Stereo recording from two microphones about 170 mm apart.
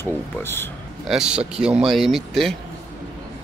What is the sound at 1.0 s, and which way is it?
Speech, 5° right (ahead or behind).